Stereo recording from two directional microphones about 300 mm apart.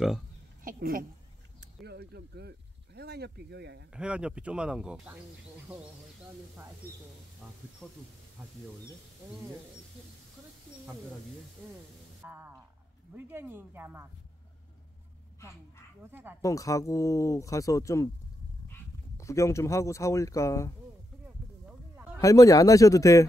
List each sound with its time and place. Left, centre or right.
0.7 s a woman's voice: right
3.9 s speech: centre
12.2 s music: centre
13.1 s speech: centre
16.0 s speech: centre
16.3 s speech: centre
21.6 s a sound: centre
22.2 s speech: centre